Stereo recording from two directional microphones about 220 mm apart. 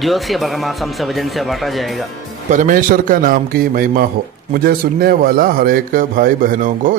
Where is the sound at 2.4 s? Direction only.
35° right (ahead or behind).